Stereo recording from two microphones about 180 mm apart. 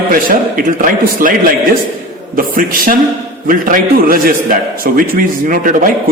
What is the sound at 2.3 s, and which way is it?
A man's voice, 50° right (ahead or behind).